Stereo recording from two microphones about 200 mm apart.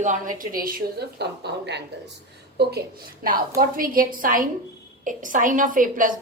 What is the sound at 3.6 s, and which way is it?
A woman's voice, 45° right (ahead or behind).